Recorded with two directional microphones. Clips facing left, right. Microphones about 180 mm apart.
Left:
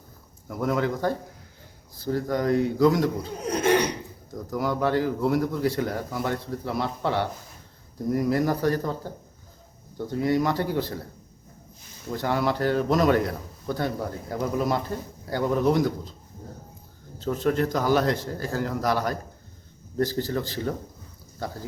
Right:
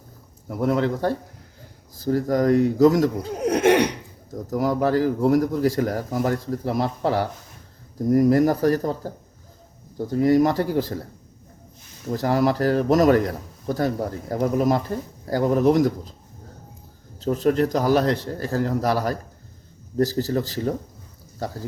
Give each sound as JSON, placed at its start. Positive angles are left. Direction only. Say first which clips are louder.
{"t": 0.6, "sound": "a man's voice", "louder": "right 3 dB", "side_deg": -30}
{"t": 2.0, "sound": "speech", "louder": "right 5 dB", "side_deg": -45}
{"t": 3.4, "sound": "speech", "louder": "right 5 dB", "side_deg": -80}
{"t": 4.3, "sound": "a man's voice", "louder": "right 4 dB", "side_deg": -40}
{"t": 12.1, "sound": "a man's voice", "louder": "right 5 dB", "side_deg": -40}
{"t": 17.2, "sound": "a man's voice", "louder": "right 4 dB", "side_deg": -40}